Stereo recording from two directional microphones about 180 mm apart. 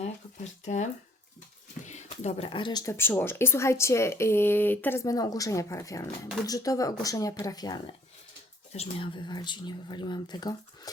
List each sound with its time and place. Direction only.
0.0 s speech: 40° left (ahead or behind); by 7.8 s 20° left (ahead or behind)
8.7 s speech: 30° left (ahead or behind)